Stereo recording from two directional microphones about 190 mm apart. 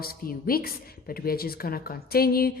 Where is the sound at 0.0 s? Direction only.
50° left (ahead or behind).